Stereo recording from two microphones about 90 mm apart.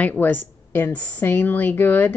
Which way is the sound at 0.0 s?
20° left (ahead or behind).